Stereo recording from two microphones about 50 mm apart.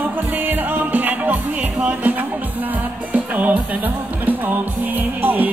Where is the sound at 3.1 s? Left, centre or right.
Right.